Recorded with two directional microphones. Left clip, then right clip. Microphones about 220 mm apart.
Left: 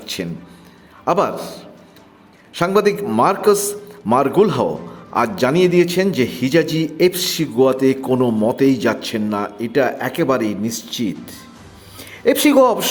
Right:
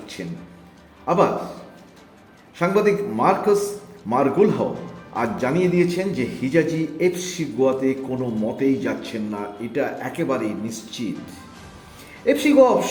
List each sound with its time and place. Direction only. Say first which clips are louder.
0.0 s a man's voice: left 7 dB; 25° left (ahead or behind)
2.6 s a man's voice: left 3 dB; 25° left (ahead or behind)
12.2 s a man's voice: left 3 dB; 25° left (ahead or behind)